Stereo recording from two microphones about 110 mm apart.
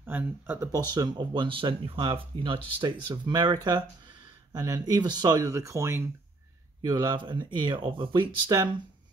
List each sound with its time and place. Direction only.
0.0 s speech: 20° right (ahead or behind)
0.7 s speech: 35° right (ahead or behind)
6.8 s speech: 40° right (ahead or behind)